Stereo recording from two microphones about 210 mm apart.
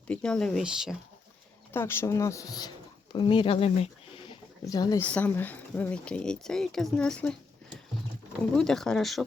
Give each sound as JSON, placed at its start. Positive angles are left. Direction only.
{"t": 0.1, "sound": "speech", "side_deg": 5}
{"t": 1.7, "sound": "speech", "side_deg": 10}
{"t": 4.1, "sound": "a sound", "side_deg": 20}
{"t": 5.0, "sound": "speech", "side_deg": 5}
{"t": 8.5, "sound": "speech", "side_deg": 5}